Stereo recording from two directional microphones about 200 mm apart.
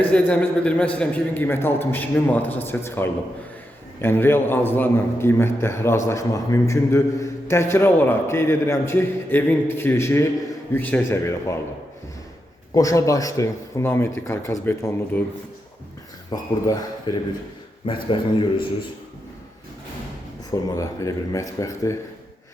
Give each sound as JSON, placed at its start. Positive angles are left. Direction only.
{"t": 0.0, "sound": "a man's voice", "side_deg": 5}
{"t": 12.7, "sound": "a man's voice", "side_deg": 15}
{"t": 16.3, "sound": "a man's voice", "side_deg": 20}
{"t": 20.5, "sound": "a man's voice", "side_deg": 15}